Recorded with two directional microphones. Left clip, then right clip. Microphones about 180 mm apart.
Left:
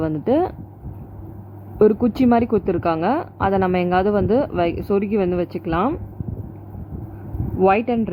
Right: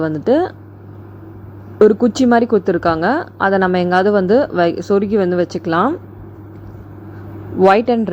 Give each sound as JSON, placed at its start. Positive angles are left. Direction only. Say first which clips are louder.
{"t": 0.0, "sound": "speech", "louder": "right 4 dB", "side_deg": -15}
{"t": 1.8, "sound": "a woman's voice", "louder": "right 5 dB", "side_deg": -20}
{"t": 7.6, "sound": "a woman's voice", "louder": "right 6 dB", "side_deg": -25}